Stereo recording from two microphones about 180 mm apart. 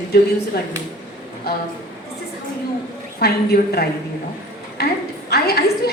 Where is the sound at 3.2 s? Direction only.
60° left (ahead or behind).